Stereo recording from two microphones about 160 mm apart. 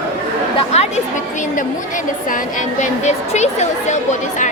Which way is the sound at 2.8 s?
45° left (ahead or behind).